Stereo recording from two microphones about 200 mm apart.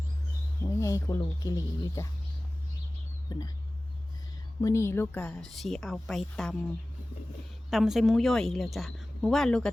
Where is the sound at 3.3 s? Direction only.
20° left (ahead or behind).